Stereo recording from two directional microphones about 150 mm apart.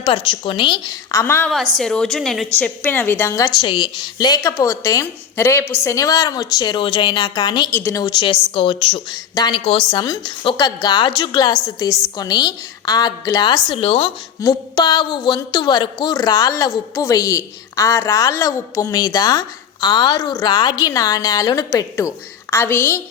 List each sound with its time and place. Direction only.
0.0 s a woman's voice: 35° left (ahead or behind); by 1.5 s 15° left (ahead or behind)
1.8 s a woman's voice: 5° left (ahead or behind); by 7.8 s 30° left (ahead or behind)
7.8 s a woman's voice: 15° left (ahead or behind)
8.0 s a woman's voice: 30° left (ahead or behind); by 23.0 s 15° left (ahead or behind)